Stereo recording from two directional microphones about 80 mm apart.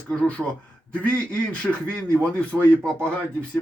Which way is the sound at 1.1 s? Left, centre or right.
Centre.